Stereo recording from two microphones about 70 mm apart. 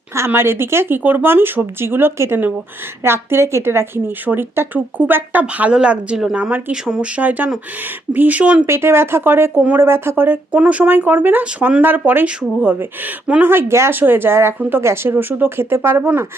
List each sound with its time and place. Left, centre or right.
0.3 s speech: right; by 7.1 s centre
7.2 s speech: right
8.6 s speech: right
10.5 s speech: centre
12.2 s speech: centre
13.5 s speech: right